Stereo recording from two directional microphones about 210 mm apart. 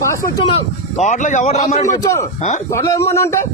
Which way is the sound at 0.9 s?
35° left (ahead or behind).